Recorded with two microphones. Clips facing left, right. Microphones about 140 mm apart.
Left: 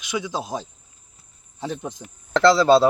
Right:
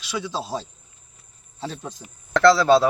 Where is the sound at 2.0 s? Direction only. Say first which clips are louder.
Right 1 dB; centre (ahead or behind).